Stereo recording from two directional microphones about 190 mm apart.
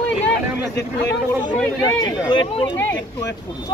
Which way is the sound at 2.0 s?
25° left (ahead or behind).